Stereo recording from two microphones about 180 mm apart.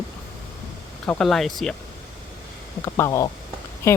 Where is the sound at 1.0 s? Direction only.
5° left (ahead or behind).